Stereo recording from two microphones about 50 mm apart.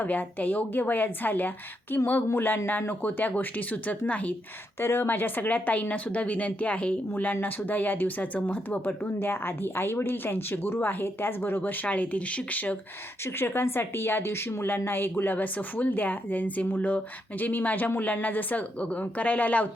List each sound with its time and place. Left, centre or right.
0.0 s speech: left
4.8 s speech: left
13.2 s speech: left